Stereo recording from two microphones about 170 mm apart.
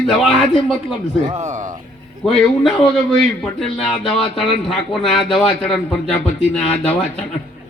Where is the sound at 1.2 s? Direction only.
45° right (ahead or behind).